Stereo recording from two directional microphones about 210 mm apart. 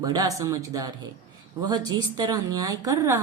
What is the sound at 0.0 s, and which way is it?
A woman's voice, 15° right (ahead or behind).